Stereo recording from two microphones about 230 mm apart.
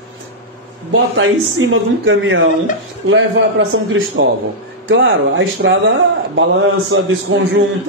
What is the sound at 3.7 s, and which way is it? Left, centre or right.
Speech, right.